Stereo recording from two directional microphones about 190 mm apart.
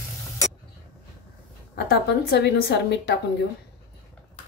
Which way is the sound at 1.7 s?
55° left (ahead or behind).